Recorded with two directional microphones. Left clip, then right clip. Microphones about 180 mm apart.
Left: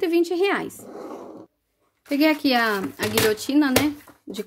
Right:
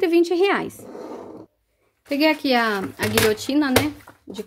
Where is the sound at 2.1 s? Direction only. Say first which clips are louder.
Right 1 dB; 5° left (ahead or behind).